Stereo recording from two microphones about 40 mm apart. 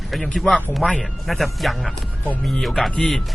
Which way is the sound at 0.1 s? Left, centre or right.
Centre.